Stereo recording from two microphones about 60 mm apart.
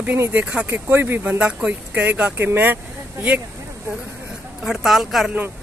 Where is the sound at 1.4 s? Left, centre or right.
Right.